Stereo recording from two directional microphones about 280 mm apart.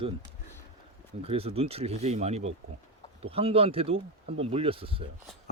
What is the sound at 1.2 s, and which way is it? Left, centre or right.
Speech, right.